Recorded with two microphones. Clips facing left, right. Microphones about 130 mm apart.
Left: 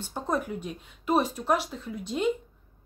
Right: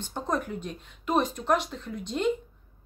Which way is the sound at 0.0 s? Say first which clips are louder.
Even; 5° left (ahead or behind).